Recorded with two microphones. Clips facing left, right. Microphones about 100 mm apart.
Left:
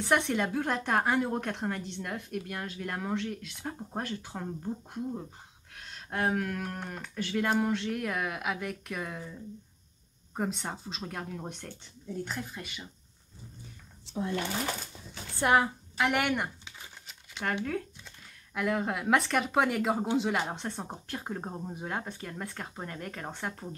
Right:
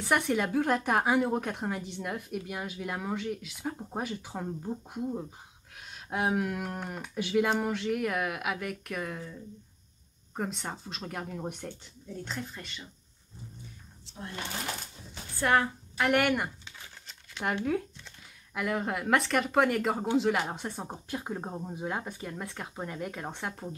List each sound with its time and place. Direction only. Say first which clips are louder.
0.0 s a woman's voice: even; centre (ahead or behind)
7.4 s speech: even; 5° right (ahead or behind)
10.3 s speech: left 1 dB; 5° left (ahead or behind)
12.3 s speech: even; 5° left (ahead or behind)
15.3 s a woman's voice: left 1 dB; 15° left (ahead or behind)
16.0 s speech: right 2 dB; centre (ahead or behind)
18.5 s speech: left 1 dB; centre (ahead or behind)